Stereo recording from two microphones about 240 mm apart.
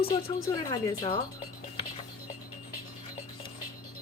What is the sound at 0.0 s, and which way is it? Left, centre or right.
Speech, centre.